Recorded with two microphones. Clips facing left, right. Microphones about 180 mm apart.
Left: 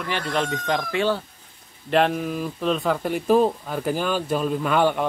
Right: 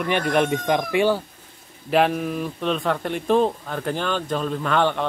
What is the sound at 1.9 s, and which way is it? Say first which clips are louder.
Speech: right 1 dB; centre (ahead or behind).